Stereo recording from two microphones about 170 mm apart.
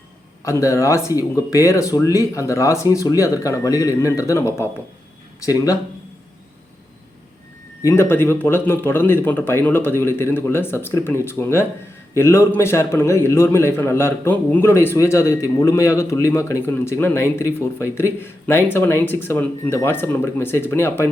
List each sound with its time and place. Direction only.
0.6 s speech: 20° left (ahead or behind)
7.9 s a man's voice: 15° left (ahead or behind)